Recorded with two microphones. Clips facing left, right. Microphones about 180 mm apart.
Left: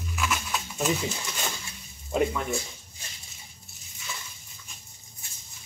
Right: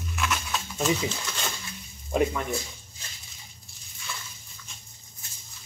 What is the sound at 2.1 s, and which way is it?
Speech, centre (ahead or behind).